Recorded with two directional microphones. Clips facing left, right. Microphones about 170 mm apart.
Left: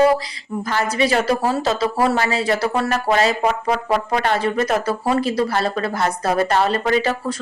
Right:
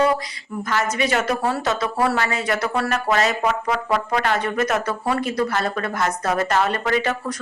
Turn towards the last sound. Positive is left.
turn(degrees=30)  # may be behind; listen again after turning